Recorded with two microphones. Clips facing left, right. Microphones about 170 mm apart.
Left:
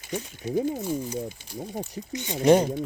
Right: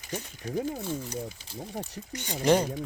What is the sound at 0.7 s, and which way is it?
Speech, 15° left (ahead or behind).